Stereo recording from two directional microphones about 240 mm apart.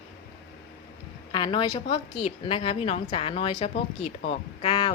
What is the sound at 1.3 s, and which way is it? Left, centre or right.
A woman's voice, centre.